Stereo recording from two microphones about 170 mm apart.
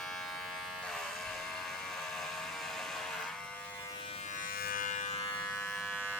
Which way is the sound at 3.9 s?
30° left (ahead or behind).